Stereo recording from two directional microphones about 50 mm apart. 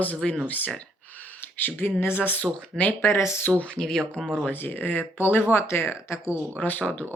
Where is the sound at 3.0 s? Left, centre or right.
Left.